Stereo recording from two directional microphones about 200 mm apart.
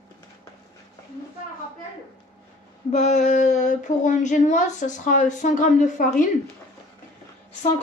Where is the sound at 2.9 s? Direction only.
35° left (ahead or behind).